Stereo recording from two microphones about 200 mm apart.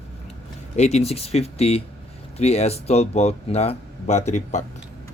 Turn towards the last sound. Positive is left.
turn(degrees=35)  # may be behind; listen again after turning